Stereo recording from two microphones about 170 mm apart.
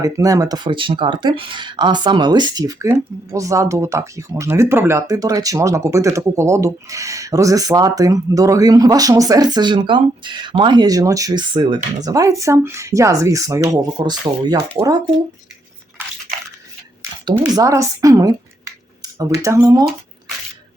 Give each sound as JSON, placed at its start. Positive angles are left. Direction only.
{"t": 0.0, "sound": "speech", "side_deg": -20}
{"t": 16.0, "sound": "biting", "side_deg": -10}
{"t": 17.4, "sound": "speech", "side_deg": -20}